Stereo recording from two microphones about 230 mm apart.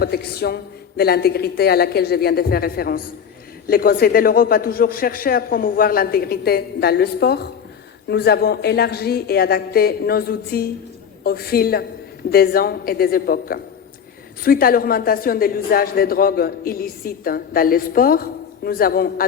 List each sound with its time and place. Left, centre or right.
0.0 s a man's voice: left